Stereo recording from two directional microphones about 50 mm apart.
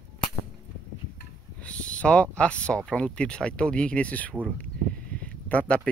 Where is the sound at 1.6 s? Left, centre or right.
Left.